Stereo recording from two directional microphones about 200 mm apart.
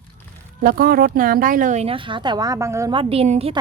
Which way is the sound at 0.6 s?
45° right (ahead or behind).